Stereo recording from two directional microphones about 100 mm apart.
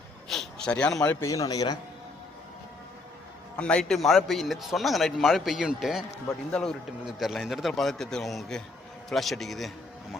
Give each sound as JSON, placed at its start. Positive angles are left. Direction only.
{"t": 0.3, "sound": "a sound", "side_deg": 5}
{"t": 1.2, "sound": "a man's voice", "side_deg": 35}
{"t": 3.6, "sound": "a man's voice", "side_deg": 10}